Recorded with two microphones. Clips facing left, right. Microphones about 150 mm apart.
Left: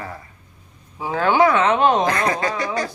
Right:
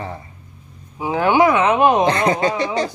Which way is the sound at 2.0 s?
25° right (ahead or behind).